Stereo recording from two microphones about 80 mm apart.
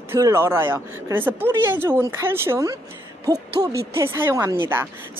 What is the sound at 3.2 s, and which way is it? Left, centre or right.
Hoot, right.